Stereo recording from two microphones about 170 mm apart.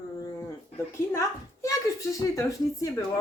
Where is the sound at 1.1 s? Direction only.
20° left (ahead or behind).